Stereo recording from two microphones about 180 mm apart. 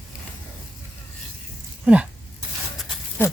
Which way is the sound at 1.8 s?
5° right (ahead or behind).